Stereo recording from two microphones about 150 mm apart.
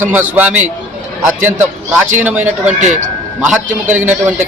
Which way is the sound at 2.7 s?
55° right (ahead or behind).